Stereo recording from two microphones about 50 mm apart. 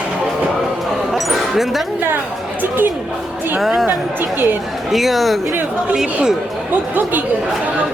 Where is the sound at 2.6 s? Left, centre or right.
Right.